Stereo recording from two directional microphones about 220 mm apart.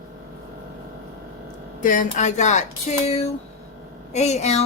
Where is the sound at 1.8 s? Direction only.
35° left (ahead or behind).